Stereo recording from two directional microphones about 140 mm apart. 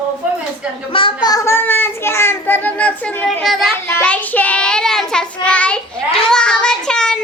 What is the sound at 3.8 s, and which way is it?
Child singing, 15° left (ahead or behind).